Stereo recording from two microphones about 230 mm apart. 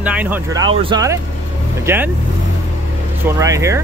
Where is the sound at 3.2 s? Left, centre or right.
Centre.